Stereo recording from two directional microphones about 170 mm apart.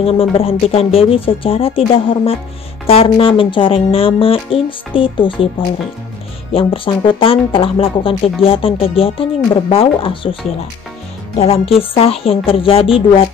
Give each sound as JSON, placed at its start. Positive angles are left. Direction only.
{"t": 0.0, "sound": "speech", "side_deg": 35}
{"t": 6.5, "sound": "speech", "side_deg": 30}
{"t": 11.3, "sound": "speech", "side_deg": 35}